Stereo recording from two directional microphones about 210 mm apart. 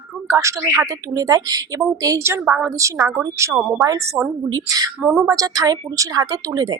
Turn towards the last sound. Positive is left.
turn(degrees=-20)  # may be behind; listen again after turning